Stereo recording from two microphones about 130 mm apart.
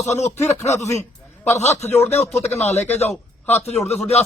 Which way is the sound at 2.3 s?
55° left (ahead or behind).